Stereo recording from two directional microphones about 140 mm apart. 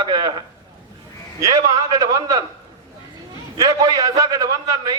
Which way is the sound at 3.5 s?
25° right (ahead or behind).